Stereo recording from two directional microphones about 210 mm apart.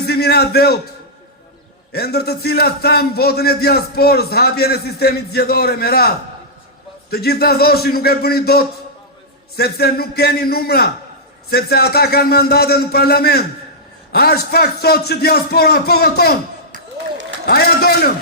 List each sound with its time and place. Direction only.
0.1 s a man's voice: 50° left (ahead or behind)
1.9 s a man's voice: 50° left (ahead or behind)
7.1 s a man's voice: 50° left (ahead or behind)
17.4 s a man's voice: 50° left (ahead or behind)